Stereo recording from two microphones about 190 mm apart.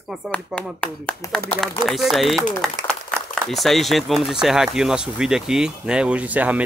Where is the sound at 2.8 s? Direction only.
40° right (ahead or behind).